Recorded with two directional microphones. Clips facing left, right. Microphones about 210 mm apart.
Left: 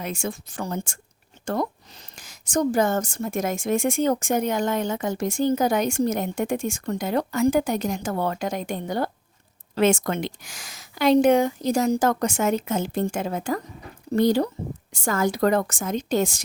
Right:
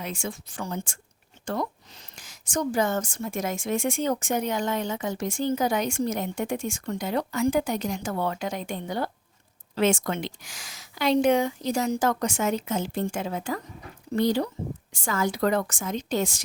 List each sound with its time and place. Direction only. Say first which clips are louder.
0.0 s a woman's voice: left 4 dB; 45° left (ahead or behind)